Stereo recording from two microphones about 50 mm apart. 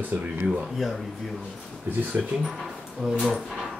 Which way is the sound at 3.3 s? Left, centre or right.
Centre.